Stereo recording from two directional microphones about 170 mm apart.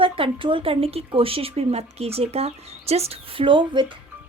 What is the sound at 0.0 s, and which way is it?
Speech, 30° right (ahead or behind).